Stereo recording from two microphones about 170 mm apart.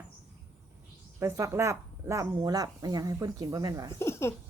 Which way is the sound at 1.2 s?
15° right (ahead or behind).